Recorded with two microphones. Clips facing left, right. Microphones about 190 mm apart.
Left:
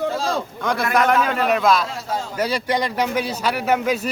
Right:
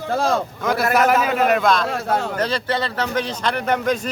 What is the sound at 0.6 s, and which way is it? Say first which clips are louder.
Speech: right 1 dB; 5° right (ahead or behind).